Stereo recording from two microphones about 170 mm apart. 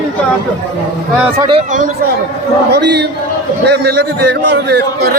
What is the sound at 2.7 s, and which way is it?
A man's voice, 80° right.